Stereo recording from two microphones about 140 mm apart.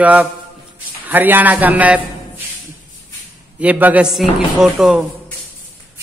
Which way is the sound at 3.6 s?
10° right (ahead or behind).